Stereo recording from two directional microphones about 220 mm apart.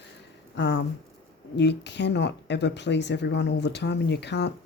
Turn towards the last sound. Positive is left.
turn(degrees=50)  # may be behind; listen again after turning